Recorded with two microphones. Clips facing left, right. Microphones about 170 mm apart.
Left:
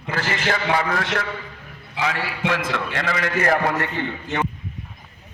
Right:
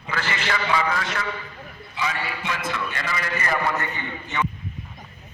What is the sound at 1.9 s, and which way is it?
A man's voice, 90° left.